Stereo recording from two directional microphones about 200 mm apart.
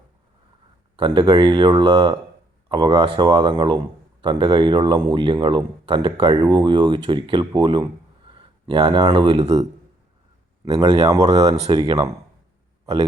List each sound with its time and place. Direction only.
0.9 s speech: 20° right (ahead or behind)
10.7 s speech: 20° right (ahead or behind)
11.5 s speech: 30° right (ahead or behind)
11.8 s speech: 20° right (ahead or behind)
12.8 s a sound: 20° right (ahead or behind)